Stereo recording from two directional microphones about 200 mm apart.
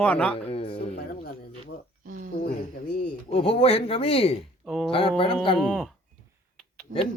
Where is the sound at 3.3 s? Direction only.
30° left (ahead or behind).